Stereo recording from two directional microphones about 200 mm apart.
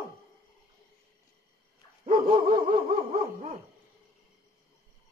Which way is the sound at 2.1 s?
45° right (ahead or behind).